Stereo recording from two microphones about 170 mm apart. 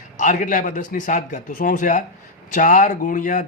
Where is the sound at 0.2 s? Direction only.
50° left (ahead or behind).